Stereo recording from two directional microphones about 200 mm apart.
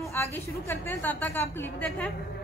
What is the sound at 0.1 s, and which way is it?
A woman's voice, 10° left (ahead or behind).